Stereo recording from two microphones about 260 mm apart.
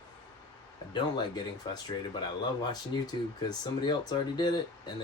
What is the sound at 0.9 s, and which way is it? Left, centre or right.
Speech, centre.